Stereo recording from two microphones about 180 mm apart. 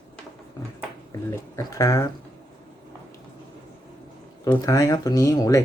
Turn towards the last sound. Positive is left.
turn(degrees=20)  # may be behind; listen again after turning